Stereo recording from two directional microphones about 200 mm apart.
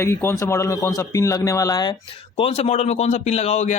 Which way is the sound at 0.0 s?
15° left (ahead or behind).